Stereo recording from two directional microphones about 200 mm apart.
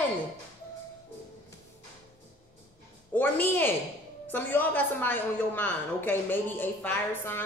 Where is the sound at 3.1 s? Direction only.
10° left (ahead or behind).